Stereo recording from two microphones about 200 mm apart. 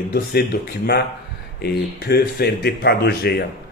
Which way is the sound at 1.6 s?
50° left (ahead or behind).